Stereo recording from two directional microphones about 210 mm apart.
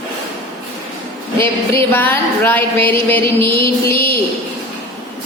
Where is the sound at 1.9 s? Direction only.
10° left (ahead or behind).